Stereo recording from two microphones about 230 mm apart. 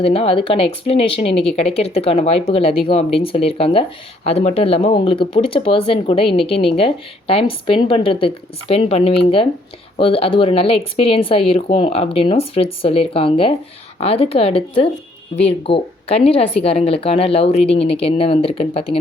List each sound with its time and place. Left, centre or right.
0.0 s speech: left